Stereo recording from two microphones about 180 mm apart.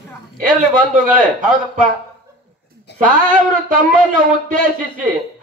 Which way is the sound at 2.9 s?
50° right (ahead or behind).